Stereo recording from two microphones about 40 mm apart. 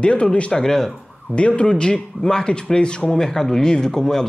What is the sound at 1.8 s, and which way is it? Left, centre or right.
Speech, centre.